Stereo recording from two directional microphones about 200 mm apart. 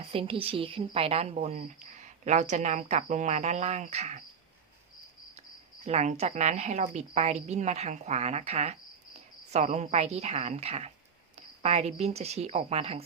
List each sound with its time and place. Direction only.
0.1 s a woman's voice: 25° right (ahead or behind)
5.8 s a woman's voice: 35° right (ahead or behind)